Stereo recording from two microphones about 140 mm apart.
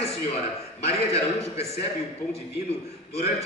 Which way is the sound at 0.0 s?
45° left (ahead or behind).